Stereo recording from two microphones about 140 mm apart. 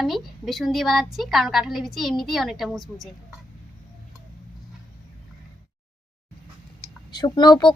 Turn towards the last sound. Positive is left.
turn(degrees=30)  # may be behind; listen again after turning